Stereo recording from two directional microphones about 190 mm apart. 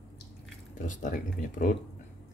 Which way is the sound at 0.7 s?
45° left (ahead or behind).